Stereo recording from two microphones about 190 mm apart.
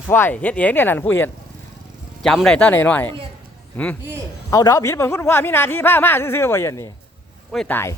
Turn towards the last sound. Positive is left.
turn(degrees=10)  # may be behind; listen again after turning